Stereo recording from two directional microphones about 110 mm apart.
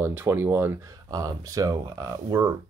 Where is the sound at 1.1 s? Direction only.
35° right (ahead or behind).